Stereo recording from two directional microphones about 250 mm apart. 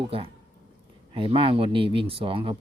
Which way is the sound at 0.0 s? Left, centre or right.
Right.